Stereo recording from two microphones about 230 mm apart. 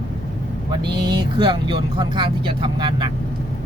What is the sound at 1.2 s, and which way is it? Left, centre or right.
Speech, right.